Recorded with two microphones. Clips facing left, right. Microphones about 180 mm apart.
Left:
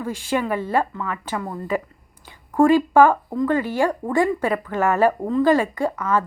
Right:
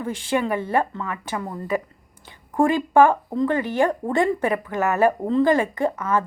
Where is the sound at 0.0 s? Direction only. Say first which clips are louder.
Even; 20° right (ahead or behind).